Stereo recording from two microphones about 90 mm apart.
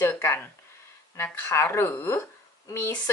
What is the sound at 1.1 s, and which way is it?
A woman's voice, 25° left (ahead or behind).